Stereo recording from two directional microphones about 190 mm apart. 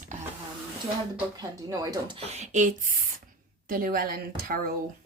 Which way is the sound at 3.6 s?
45° right (ahead or behind).